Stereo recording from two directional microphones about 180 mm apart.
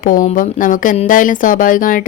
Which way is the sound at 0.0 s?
50° left (ahead or behind).